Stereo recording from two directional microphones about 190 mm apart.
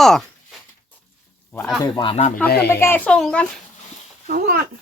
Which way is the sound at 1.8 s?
25° left (ahead or behind).